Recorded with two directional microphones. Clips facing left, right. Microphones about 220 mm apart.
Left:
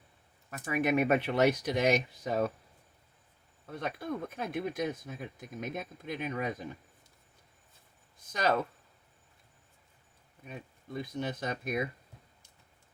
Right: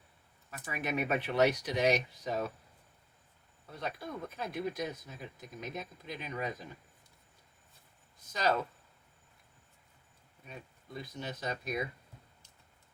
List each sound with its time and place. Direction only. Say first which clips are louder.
0.5 s speech: left 7 dB; 50° left (ahead or behind)
3.7 s speech: left 4 dB; 50° left (ahead or behind)
8.3 s speech: left 2 dB; 55° left (ahead or behind)
10.9 s speech: left 6 dB; 50° left (ahead or behind)